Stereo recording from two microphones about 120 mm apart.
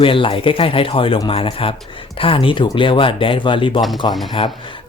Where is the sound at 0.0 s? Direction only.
50° left (ahead or behind).